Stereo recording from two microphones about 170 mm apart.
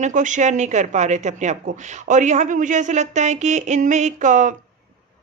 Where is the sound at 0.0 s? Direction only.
45° right (ahead or behind).